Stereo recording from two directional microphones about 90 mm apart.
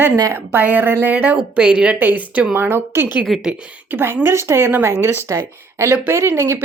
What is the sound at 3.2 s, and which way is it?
Speech, centre (ahead or behind).